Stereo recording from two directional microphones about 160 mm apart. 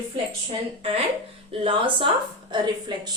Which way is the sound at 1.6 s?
35° right (ahead or behind).